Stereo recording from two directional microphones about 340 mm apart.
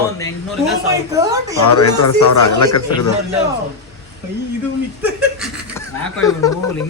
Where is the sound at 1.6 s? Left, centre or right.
Left.